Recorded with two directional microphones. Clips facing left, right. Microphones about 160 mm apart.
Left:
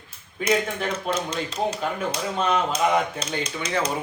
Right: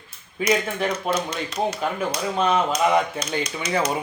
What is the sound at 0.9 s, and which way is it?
Speech, 30° left (ahead or behind).